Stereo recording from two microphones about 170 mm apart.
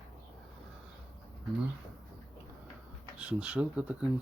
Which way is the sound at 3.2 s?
5° right (ahead or behind).